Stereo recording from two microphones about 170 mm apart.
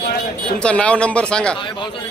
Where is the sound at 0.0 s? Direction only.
65° left (ahead or behind).